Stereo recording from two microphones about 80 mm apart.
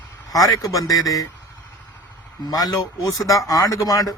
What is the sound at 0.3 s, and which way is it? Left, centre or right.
Speech, left.